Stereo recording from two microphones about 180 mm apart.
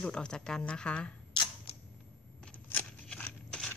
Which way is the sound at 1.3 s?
25° left (ahead or behind).